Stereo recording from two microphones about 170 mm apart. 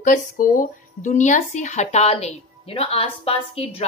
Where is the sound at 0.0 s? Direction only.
50° left (ahead or behind).